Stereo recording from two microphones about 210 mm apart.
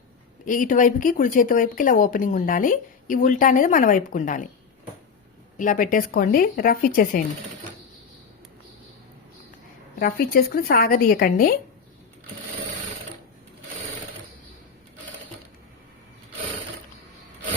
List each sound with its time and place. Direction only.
0.4 s speech: 40° left (ahead or behind)
5.5 s speech: 40° left (ahead or behind)
10.0 s speech: 45° left (ahead or behind)